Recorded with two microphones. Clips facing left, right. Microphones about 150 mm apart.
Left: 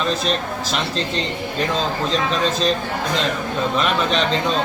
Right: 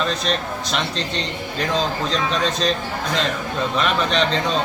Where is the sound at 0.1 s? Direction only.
Centre (ahead or behind).